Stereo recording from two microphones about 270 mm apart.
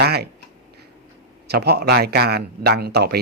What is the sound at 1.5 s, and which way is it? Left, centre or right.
Speech, right.